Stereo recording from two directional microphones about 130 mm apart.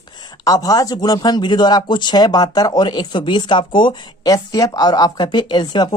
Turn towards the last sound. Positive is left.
turn(degrees=35)  # may be behind; listen again after turning